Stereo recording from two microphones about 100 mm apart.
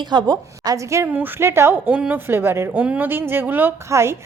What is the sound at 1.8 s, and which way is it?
Speech, 15° right (ahead or behind).